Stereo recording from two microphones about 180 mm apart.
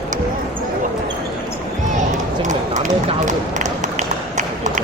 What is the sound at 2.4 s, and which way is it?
Run, 40° right (ahead or behind).